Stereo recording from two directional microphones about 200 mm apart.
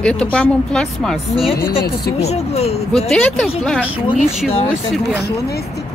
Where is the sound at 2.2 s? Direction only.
30° left (ahead or behind).